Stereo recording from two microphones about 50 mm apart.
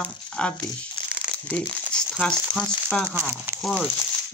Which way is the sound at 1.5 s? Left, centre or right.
Centre.